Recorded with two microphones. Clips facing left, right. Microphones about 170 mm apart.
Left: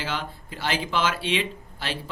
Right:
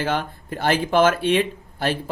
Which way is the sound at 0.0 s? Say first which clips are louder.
Right 7 dB; 55° right (ahead or behind).